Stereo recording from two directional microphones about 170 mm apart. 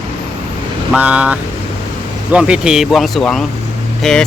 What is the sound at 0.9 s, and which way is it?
Speech, 10° right (ahead or behind).